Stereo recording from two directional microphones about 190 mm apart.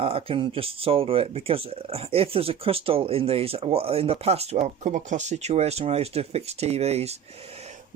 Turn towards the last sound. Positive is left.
turn(degrees=-35)  # may be behind; listen again after turning